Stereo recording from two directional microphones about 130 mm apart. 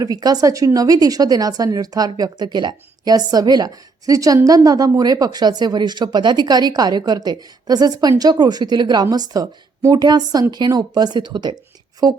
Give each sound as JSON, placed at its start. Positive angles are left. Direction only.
{"t": 0.0, "sound": "a woman's voice", "side_deg": -30}